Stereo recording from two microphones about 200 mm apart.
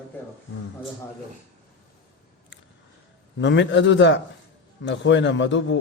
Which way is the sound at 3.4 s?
65° left (ahead or behind).